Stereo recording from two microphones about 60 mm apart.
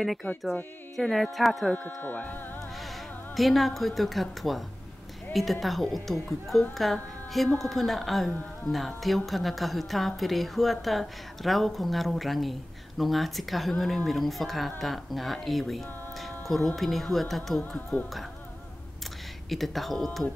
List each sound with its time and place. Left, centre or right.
0.2 s speech: left
0.9 s a woman's voice: centre
1.7 s speech: centre
3.3 s a woman's voice: centre
19.5 s a woman's voice: centre